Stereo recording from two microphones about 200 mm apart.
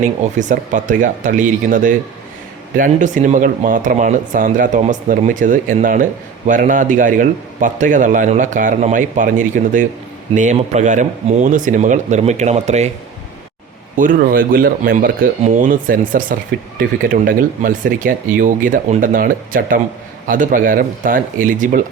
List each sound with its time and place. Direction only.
0.0 s speech: 40° right (ahead or behind)
13.9 s speech: 40° right (ahead or behind)